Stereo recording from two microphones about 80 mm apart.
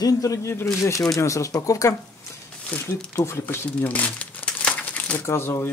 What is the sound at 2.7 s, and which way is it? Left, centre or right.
Speech, centre.